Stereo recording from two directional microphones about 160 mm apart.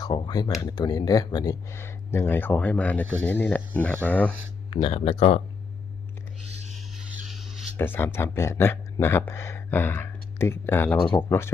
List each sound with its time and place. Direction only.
0.0 s speech: 25° left (ahead or behind); by 4.3 s 10° left (ahead or behind)
4.7 s speech: 35° left (ahead or behind)
6.5 s a sound: 45° right (ahead or behind)
7.8 s speech: 15° left (ahead or behind)